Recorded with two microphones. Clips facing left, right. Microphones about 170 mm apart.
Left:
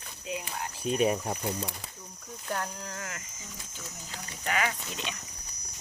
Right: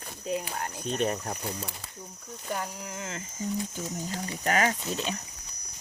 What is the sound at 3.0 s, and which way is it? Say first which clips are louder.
Speech: right 3 dB; 25° right (ahead or behind).